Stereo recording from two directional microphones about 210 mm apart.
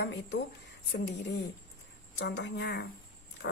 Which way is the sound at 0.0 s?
55° left (ahead or behind).